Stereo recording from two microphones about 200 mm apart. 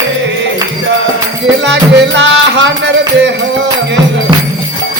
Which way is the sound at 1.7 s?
60° right (ahead or behind).